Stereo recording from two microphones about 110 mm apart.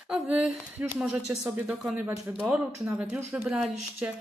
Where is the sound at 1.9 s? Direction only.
25° right (ahead or behind).